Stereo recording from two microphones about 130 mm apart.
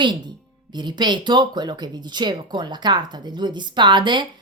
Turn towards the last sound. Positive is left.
turn(degrees=-35)  # may be behind; listen again after turning